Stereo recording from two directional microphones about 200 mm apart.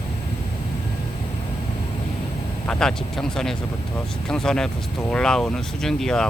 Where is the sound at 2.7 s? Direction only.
5° left (ahead or behind).